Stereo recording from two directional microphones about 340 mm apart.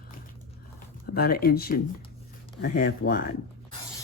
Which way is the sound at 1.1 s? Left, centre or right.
Left.